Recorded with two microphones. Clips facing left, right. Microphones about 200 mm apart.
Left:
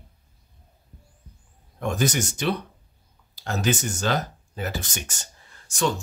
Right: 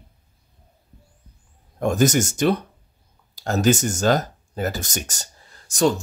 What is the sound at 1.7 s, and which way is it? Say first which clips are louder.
Speech: right 6 dB; 45° right (ahead or behind).